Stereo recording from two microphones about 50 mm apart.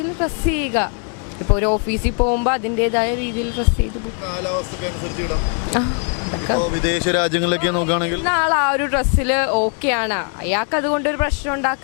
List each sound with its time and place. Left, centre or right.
0.2 s speech: left